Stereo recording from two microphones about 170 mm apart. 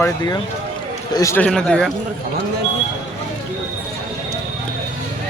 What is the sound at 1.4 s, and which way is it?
Speech, 5° left (ahead or behind).